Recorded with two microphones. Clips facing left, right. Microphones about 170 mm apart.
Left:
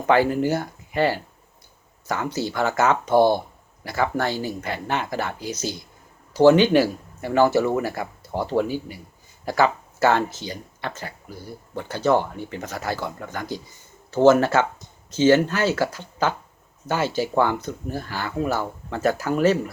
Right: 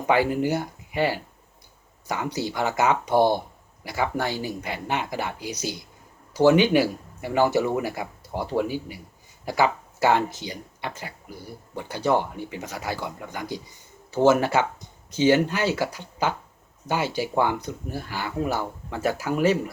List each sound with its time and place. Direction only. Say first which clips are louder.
0.0 s speech: left 3 dB; 15° right (ahead or behind)